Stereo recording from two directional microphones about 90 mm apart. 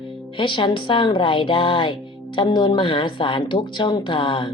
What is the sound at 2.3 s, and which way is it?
Speech, 60° left (ahead or behind).